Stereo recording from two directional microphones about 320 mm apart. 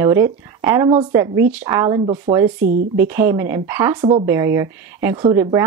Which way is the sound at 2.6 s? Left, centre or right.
Right.